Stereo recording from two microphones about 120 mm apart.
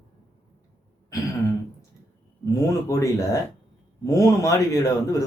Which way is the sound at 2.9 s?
25° left (ahead or behind).